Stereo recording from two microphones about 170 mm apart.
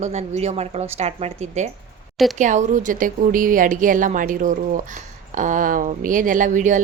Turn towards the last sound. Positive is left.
turn(degrees=-45)  # may be behind; listen again after turning